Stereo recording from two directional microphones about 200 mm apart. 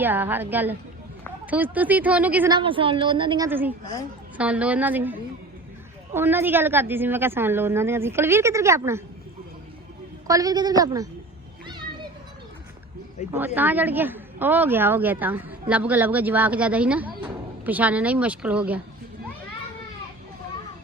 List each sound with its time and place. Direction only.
0.0 s a woman's voice: 10° right (ahead or behind)
2.5 s a woman's voice: 25° right (ahead or behind); by 5.1 s 10° right (ahead or behind)
6.1 s a woman's voice: 10° right (ahead or behind)
10.2 s a woman's voice: 15° right (ahead or behind)
13.3 s a woman's voice: 10° right (ahead or behind)